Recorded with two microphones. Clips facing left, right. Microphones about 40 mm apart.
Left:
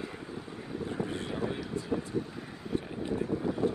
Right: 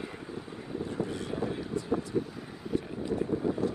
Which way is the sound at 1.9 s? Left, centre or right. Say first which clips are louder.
Right 2 dB; left.